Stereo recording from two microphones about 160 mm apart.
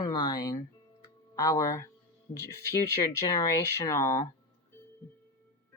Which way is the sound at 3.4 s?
20° left (ahead or behind).